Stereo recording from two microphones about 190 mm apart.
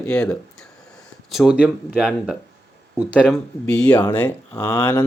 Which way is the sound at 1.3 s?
Centre (ahead or behind).